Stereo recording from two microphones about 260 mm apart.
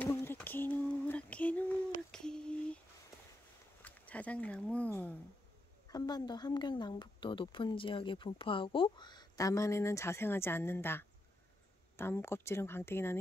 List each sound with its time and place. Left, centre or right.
0.0 s female singing: centre
3.8 s a sound: centre
5.9 s a woman's voice: centre